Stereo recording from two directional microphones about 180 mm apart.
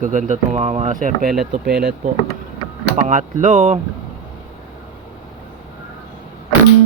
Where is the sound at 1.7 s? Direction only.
65° right (ahead or behind).